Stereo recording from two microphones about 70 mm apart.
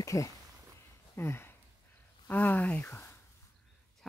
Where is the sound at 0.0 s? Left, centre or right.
Left.